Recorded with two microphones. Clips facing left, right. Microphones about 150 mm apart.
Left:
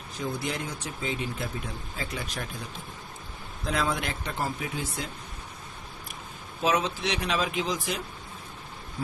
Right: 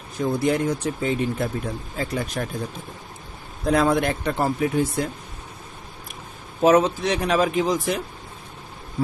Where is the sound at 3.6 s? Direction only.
50° right (ahead or behind).